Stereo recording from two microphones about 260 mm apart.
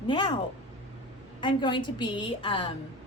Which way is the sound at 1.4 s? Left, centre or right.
Centre.